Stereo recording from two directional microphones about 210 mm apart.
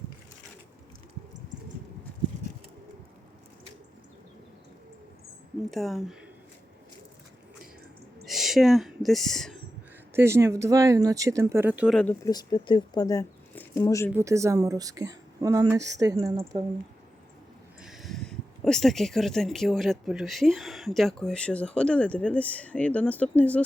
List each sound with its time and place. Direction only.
5.7 s speech: centre (ahead or behind)
8.2 s speech: centre (ahead or behind)
10.2 s speech: 15° right (ahead or behind)
11.9 s speech: 5° left (ahead or behind)
12.3 s speech: 20° left (ahead or behind)
14.1 s speech: 15° right (ahead or behind)
17.8 s speech: centre (ahead or behind)